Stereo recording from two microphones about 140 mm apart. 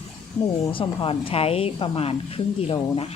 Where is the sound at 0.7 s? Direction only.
40° left (ahead or behind).